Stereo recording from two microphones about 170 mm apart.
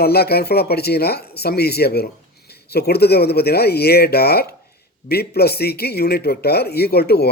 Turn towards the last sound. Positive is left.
turn(degrees=70)  # may be behind; listen again after turning